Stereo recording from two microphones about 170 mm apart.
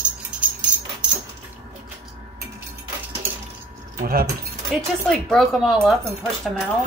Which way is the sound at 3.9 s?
60° right (ahead or behind).